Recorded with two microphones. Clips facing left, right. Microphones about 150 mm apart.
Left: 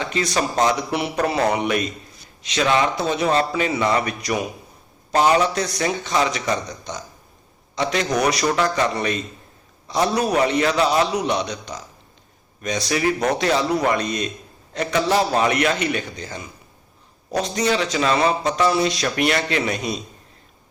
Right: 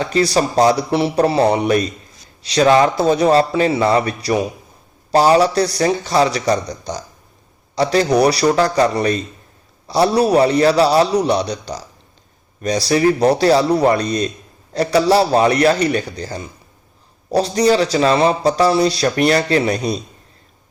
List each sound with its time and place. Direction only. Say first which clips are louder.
0.0 s a man's voice: right 6 dB; 35° right (ahead or behind)